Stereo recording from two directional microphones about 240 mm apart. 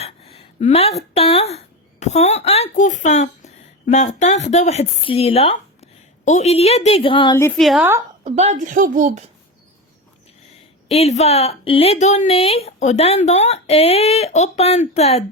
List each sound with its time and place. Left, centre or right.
0.0 s speech: left; by 8.0 s centre
8.2 s speech: right
10.8 s speech: left